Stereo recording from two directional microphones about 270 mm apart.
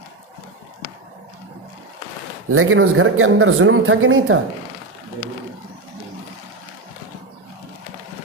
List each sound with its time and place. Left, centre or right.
2.5 s speech: right